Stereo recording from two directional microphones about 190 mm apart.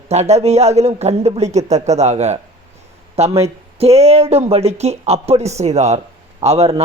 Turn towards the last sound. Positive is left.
turn(degrees=-35)  # may be behind; listen again after turning